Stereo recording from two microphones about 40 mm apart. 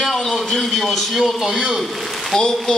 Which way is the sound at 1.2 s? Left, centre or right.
Centre.